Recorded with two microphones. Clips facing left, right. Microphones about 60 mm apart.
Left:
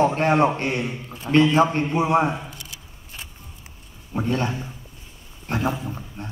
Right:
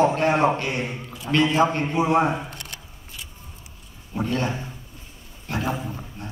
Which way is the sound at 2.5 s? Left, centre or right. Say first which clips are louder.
Right 2 dB; right.